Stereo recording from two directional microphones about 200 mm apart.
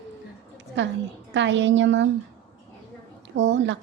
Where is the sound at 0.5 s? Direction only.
65° right (ahead or behind).